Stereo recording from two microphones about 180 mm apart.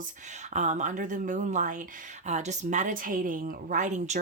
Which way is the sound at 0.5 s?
40° right (ahead or behind).